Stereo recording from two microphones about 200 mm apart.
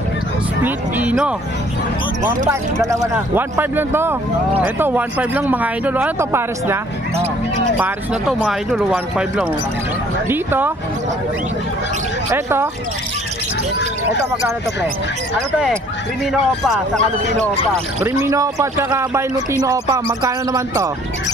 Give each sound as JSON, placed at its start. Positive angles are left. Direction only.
{"t": 0.7, "sound": "a man's voice", "side_deg": -10}
{"t": 7.8, "sound": "a man's voice", "side_deg": -5}
{"t": 12.3, "sound": "a man's voice", "side_deg": -15}
{"t": 15.5, "sound": "speech", "side_deg": 0}
{"t": 18.0, "sound": "a man's voice", "side_deg": -15}